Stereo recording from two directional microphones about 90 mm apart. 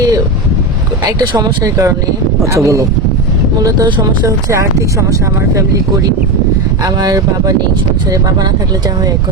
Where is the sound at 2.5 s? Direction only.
35° right (ahead or behind).